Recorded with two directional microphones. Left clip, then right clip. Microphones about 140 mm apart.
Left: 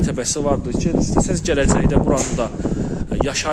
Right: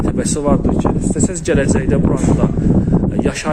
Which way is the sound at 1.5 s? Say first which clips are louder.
Right 1 dB; 15° left (ahead or behind).